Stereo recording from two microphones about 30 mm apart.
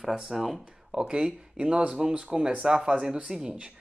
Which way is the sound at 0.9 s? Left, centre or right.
Right.